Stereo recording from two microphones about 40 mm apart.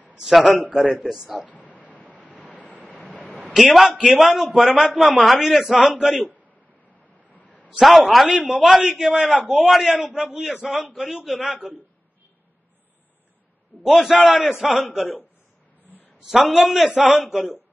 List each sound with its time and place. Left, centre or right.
0.2 s a man's voice: centre
1.6 s bow-wow: left
1.9 s vehicle: right
2.4 s vehicle: left
3.4 s a man's voice: centre
5.0 s a man's voice: centre
5.8 s a man's voice: centre
7.3 s a sound: left
7.8 s a man's voice: centre
9.4 s a man's voice: right
9.7 s a man's voice: centre
14.1 s a man's voice: right
16.3 s a man's voice: centre